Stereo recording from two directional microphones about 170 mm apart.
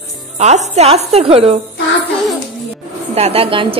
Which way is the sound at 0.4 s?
40° right (ahead or behind).